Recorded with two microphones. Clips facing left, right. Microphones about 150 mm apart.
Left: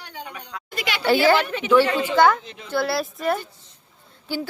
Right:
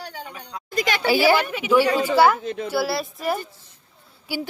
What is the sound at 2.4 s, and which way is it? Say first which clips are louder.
Speech: right 13 dB; 45° right (ahead or behind).